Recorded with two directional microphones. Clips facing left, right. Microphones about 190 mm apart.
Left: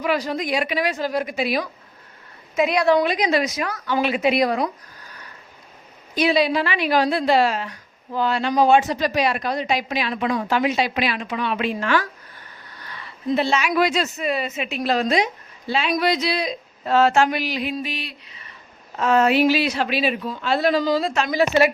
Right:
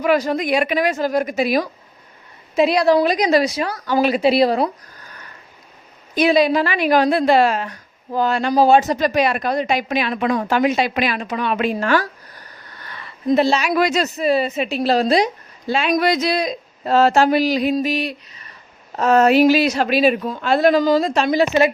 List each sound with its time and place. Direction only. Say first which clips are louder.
0.0 s a woman's voice: right 5 dB; 50° right (ahead or behind)
2.6 s a woman's voice: right 3 dB; 35° right (ahead or behind)
6.1 s a woman's voice: right 4 dB; 45° right (ahead or behind)
21.2 s a woman's voice: right 2 dB; 25° right (ahead or behind)